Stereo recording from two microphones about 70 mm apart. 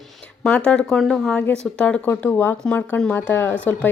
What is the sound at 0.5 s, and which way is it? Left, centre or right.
Speech, centre.